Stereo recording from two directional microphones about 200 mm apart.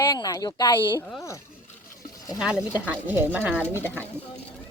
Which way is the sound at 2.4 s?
5° right (ahead or behind).